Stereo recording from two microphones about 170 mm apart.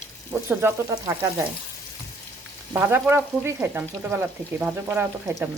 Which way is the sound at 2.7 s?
15° right (ahead or behind).